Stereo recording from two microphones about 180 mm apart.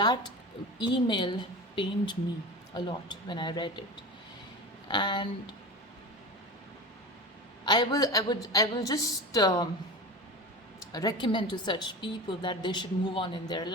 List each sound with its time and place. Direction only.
0.0 s a sound: 25° left (ahead or behind)
0.8 s a woman's voice: 25° left (ahead or behind)
4.9 s a woman's voice: 25° left (ahead or behind)
7.6 s a woman's voice: 25° left (ahead or behind)
10.9 s a woman's voice: 25° left (ahead or behind)